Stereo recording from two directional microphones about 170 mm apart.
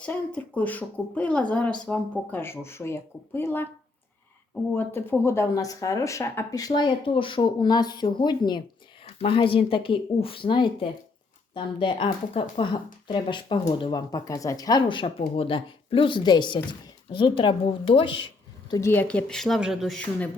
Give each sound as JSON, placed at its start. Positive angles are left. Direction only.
{"t": 0.0, "sound": "speech", "side_deg": 5}
{"t": 4.7, "sound": "speech", "side_deg": 15}
{"t": 18.7, "sound": "speech", "side_deg": 15}